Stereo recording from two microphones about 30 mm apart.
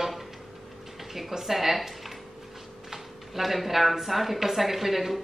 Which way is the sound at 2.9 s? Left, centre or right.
Centre.